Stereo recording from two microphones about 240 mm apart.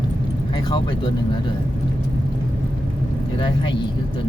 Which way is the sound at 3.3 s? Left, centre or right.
Centre.